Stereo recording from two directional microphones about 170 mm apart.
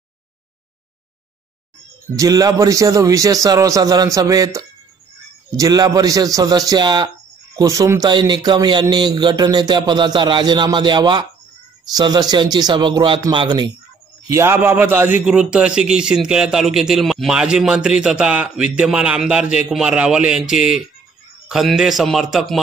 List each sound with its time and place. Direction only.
2.1 s speech: 20° right (ahead or behind)
14.3 s a man's voice: 15° right (ahead or behind)